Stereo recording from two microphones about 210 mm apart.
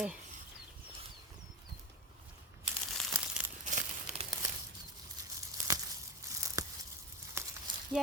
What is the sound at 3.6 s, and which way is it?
Crumpling, 35° right (ahead or behind).